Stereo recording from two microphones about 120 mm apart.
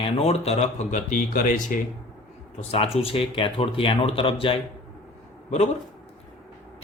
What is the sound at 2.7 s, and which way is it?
Speech, 55° left (ahead or behind).